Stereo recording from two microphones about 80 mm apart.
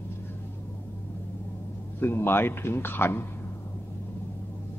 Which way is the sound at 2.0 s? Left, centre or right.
Left.